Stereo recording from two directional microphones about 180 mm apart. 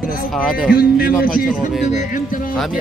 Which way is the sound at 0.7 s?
55° left (ahead or behind).